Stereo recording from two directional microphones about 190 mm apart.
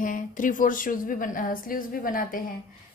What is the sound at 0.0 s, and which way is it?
A woman's voice, 45° left (ahead or behind).